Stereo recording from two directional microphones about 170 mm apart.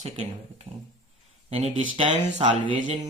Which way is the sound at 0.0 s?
40° right (ahead or behind).